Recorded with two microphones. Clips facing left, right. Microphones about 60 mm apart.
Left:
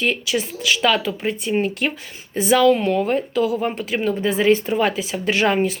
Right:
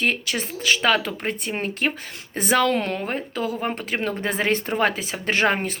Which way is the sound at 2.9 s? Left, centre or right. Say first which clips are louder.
Left 8 dB; right.